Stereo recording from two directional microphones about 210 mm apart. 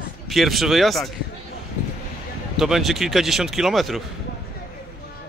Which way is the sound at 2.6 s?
Centre (ahead or behind).